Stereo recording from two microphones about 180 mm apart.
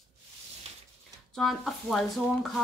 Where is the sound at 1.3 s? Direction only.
Centre (ahead or behind).